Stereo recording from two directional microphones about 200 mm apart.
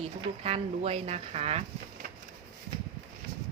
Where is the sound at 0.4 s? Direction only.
30° right (ahead or behind).